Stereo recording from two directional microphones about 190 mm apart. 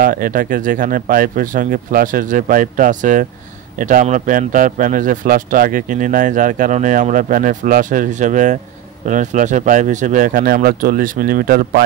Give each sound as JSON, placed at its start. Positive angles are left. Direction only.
{"t": 0.0, "sound": "a man's voice", "side_deg": -45}